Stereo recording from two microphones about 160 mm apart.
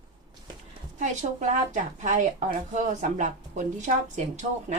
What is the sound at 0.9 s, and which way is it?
A woman's voice, 50° right (ahead or behind).